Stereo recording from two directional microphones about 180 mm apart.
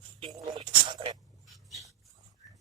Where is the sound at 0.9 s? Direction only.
25° right (ahead or behind).